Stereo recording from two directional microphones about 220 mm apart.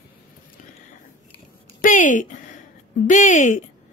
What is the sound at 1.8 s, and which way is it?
A woman's voice, 35° left (ahead or behind).